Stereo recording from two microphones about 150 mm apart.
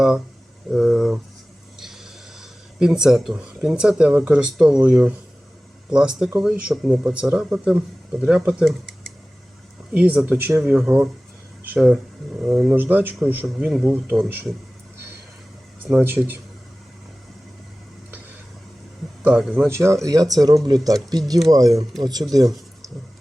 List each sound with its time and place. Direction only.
0.7 s speech: centre (ahead or behind)
2.4 s speech: 5° right (ahead or behind)
9.9 s speech: 5° right (ahead or behind)
15.9 s speech: 10° right (ahead or behind)
19.2 s speech: 5° right (ahead or behind)
19.6 s speech: 15° right (ahead or behind)